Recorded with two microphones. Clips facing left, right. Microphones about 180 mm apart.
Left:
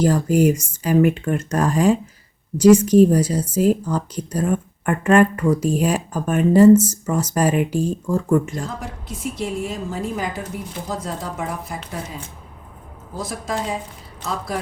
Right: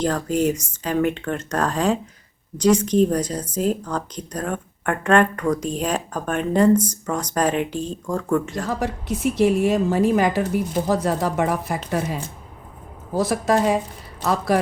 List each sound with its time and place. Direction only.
0.0 s speech: 10° left (ahead or behind)
8.5 s a woman's voice: 75° right (ahead or behind)